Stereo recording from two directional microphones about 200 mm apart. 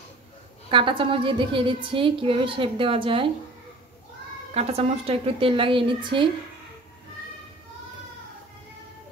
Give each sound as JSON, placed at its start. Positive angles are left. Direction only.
{"t": 0.7, "sound": "a woman's voice", "side_deg": -25}
{"t": 4.6, "sound": "a woman's voice", "side_deg": -30}